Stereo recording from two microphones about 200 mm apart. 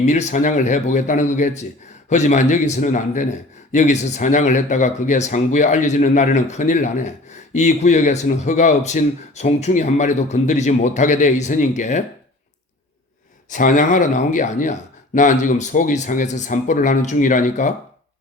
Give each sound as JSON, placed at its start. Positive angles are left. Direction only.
{"t": 0.0, "sound": "speech", "side_deg": 35}
{"t": 13.5, "sound": "speech", "side_deg": 40}